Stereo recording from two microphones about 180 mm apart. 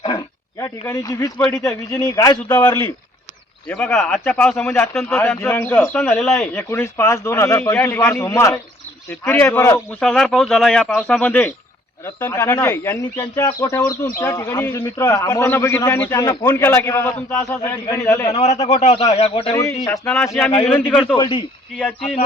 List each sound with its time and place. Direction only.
0.6 s speech: 15° left (ahead or behind)
1.4 s speech: centre (ahead or behind)
2.0 s speech: 20° left (ahead or behind); by 6.7 s 5° left (ahead or behind)
6.7 s speech: 15° left (ahead or behind)
10.0 s speech: 5° left (ahead or behind)
16.2 s speech: 20° left (ahead or behind)
18.3 s speech: 40° left (ahead or behind)
19.5 s speech: 15° left (ahead or behind)
21.2 s a man's voice: 30° left (ahead or behind)
21.8 s speech: 5° left (ahead or behind)